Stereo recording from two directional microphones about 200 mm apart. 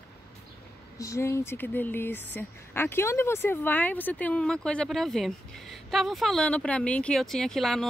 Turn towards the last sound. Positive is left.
turn(degrees=0)  # may be behind; listen again after turning